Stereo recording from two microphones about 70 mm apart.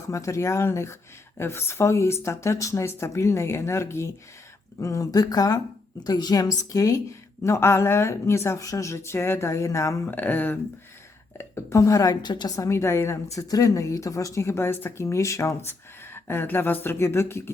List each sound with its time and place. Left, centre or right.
0.1 s a woman's voice: left
6.0 s a woman's voice: left
10.1 s speech: left
11.3 s a woman's voice: left
12.2 s a woman's voice: left
12.5 s a woman's voice: left
13.5 s a woman's voice: left
15.6 s speech: left